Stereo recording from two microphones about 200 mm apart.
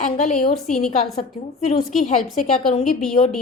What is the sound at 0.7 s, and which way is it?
Speech, centre (ahead or behind).